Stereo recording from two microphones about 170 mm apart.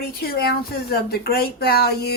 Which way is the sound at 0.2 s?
65° left (ahead or behind).